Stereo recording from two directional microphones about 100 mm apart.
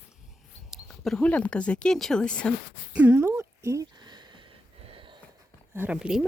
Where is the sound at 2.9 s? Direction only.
20° right (ahead or behind).